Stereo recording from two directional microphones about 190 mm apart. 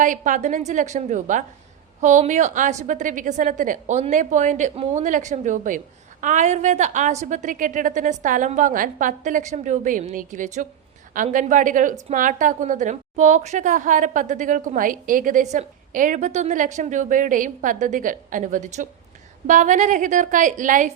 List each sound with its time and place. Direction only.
0.0 s a woman's voice: 45° right (ahead or behind)